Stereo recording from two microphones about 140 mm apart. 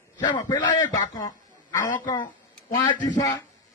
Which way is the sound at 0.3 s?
35° left (ahead or behind).